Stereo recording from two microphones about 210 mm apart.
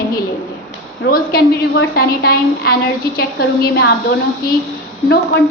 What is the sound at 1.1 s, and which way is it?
A woman's voice, 45° left (ahead or behind).